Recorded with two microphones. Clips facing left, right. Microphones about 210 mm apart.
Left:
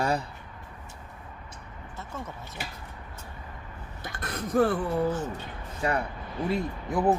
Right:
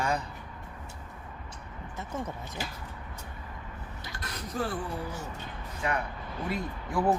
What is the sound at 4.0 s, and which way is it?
Gasp, 50° left (ahead or behind).